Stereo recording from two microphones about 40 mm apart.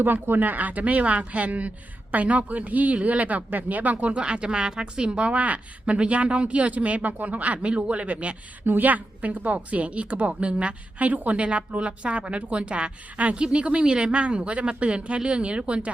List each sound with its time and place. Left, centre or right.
0.0 s a woman's voice: right
8.6 s a woman's voice: right